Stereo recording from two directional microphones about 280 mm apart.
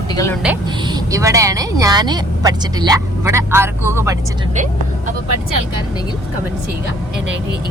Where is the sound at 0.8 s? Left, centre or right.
Centre.